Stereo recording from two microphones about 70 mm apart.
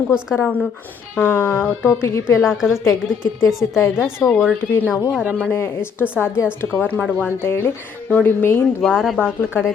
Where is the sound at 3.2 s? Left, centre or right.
Left.